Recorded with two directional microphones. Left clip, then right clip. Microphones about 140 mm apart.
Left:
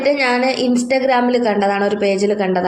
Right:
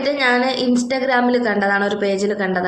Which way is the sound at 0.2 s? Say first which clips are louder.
Left 1 dB; 20° left (ahead or behind).